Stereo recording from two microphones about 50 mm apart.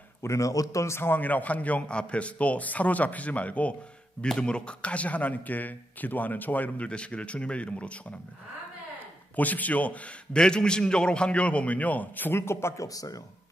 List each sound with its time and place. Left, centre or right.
0.2 s speech: left
0.9 s a man's voice: left
1.2 s a man's voice: left
6.9 s a man's voice: left
9.3 s a man's voice: left
10.3 s a man's voice: centre; by 12.3 s left
12.3 s speech: left